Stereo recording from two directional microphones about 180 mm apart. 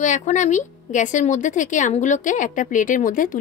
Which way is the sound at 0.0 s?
40° left (ahead or behind).